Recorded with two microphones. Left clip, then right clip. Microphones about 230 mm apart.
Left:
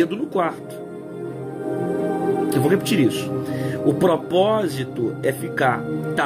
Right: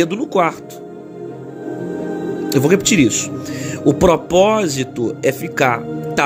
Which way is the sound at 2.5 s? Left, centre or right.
Right.